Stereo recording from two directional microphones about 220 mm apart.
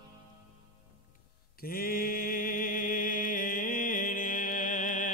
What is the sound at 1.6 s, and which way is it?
Mantra, 40° left (ahead or behind).